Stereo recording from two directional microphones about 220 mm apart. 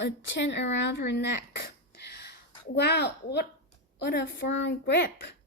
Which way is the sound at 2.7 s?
50° left (ahead or behind).